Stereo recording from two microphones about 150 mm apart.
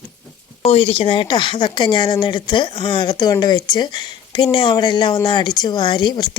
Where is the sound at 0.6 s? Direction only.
40° left (ahead or behind).